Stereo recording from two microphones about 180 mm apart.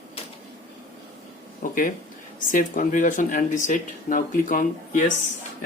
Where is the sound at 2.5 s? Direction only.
45° left (ahead or behind).